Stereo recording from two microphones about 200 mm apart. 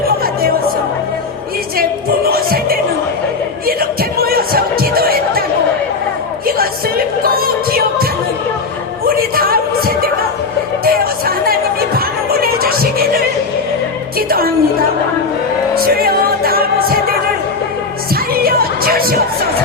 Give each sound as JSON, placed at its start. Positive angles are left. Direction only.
{"t": 1.8, "sound": "music", "side_deg": -50}
{"t": 7.3, "sound": "music", "side_deg": -50}
{"t": 9.0, "sound": "music", "side_deg": -50}
{"t": 14.2, "sound": "music", "side_deg": -50}
{"t": 18.3, "sound": "music", "side_deg": -50}